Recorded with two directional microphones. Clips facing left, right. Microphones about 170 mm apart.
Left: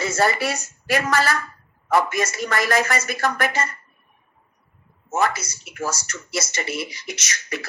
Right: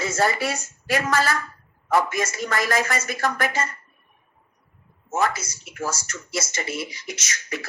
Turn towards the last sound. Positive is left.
turn(degrees=70)  # may be behind; listen again after turning